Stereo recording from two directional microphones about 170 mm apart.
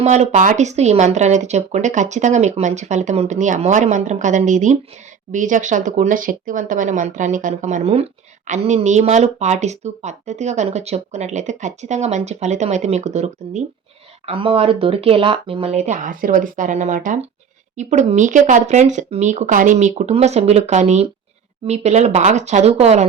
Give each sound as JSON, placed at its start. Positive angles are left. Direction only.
{"t": 0.0, "sound": "speech", "side_deg": -40}